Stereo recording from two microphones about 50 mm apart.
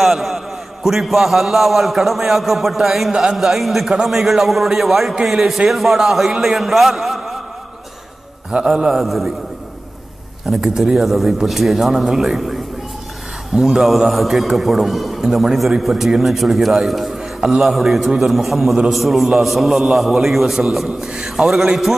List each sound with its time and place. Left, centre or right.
0.0 s a sound: centre
0.8 s a man's voice: centre
3.1 s a man's voice: centre
3.3 s a man's voice: centre
8.5 s a man's voice: centre
10.5 s a man's voice: centre
13.6 s a man's voice: centre